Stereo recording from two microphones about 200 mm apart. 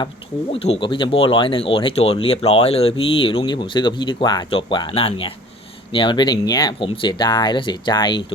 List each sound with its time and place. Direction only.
0.5 s speech: 30° left (ahead or behind)